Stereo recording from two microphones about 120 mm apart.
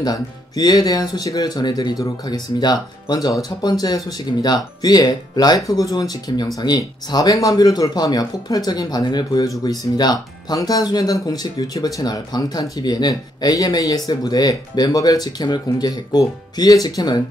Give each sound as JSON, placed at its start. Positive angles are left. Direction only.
{"t": 0.0, "sound": "speech", "side_deg": 35}